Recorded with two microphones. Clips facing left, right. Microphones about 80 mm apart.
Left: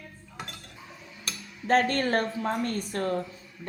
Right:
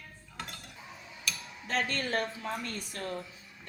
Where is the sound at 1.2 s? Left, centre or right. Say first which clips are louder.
Left 4 dB; left.